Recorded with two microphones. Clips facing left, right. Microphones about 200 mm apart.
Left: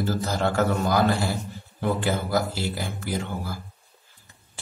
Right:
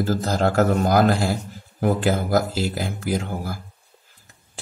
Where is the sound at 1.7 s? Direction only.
45° right (ahead or behind).